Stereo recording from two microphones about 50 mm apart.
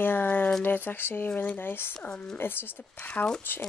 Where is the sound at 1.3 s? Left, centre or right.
Left.